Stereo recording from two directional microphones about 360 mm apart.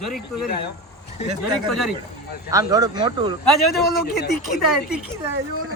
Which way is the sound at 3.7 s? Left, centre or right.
Left.